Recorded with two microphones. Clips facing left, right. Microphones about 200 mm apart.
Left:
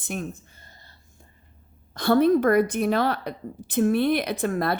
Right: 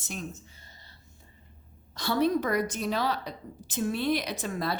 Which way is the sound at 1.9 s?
55° left (ahead or behind).